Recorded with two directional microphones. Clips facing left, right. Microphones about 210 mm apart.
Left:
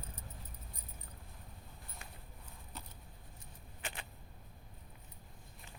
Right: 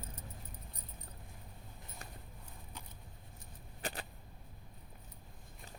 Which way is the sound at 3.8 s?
40° right (ahead or behind).